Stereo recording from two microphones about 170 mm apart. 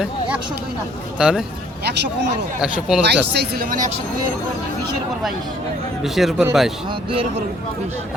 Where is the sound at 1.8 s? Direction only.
85° right.